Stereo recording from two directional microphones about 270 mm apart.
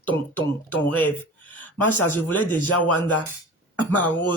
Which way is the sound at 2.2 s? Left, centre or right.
Centre.